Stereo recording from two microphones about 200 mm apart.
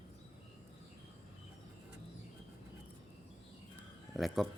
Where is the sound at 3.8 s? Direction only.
Centre (ahead or behind).